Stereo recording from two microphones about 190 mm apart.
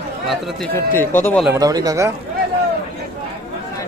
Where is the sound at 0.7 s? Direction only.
10° left (ahead or behind).